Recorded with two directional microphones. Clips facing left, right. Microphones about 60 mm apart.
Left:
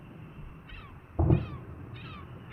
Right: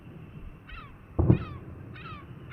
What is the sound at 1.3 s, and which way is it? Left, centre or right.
Crow, right.